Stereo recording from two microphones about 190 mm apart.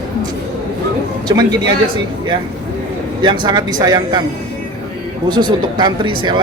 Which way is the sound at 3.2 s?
25° right (ahead or behind).